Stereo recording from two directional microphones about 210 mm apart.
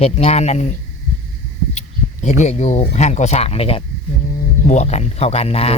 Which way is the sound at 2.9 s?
35° left (ahead or behind).